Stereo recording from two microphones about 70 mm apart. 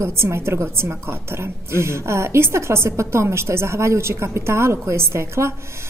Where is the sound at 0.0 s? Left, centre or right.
Right.